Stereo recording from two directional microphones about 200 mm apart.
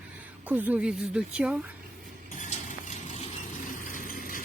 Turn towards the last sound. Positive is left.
turn(degrees=45)  # may be behind; listen again after turning